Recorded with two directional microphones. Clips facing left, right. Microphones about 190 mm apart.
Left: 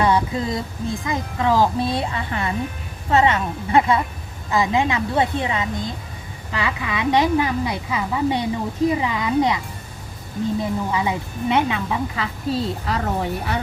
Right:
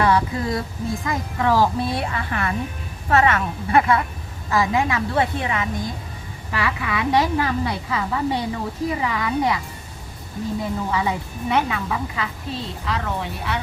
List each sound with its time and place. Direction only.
0.0 s a sound: 20° left (ahead or behind)
1.0 s a woman's voice: 20° left (ahead or behind)
10.6 s a woman's voice: 15° left (ahead or behind)
12.1 s a woman's voice: 35° left (ahead or behind)